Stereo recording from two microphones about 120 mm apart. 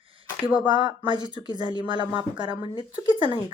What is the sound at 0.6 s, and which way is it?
A woman's voice, 40° right (ahead or behind).